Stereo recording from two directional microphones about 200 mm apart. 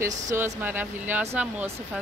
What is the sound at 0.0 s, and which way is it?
Speech, 10° right (ahead or behind).